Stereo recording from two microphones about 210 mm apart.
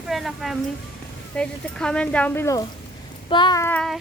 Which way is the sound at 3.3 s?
20° left (ahead or behind).